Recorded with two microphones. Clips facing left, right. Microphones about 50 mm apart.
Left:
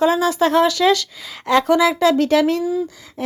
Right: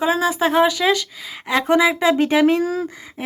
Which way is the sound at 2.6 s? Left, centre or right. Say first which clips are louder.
Left 1 dB; right.